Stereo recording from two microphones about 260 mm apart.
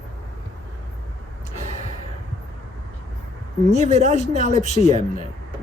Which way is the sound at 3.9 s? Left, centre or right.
Right.